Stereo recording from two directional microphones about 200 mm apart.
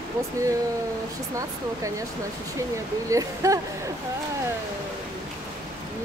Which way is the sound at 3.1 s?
15° right (ahead or behind).